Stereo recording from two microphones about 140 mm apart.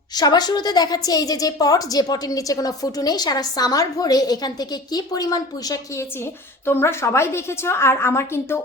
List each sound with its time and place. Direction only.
0.2 s a woman's voice: 30° left (ahead or behind)